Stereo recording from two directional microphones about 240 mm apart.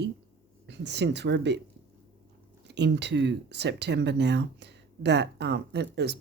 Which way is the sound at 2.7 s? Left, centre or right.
Right.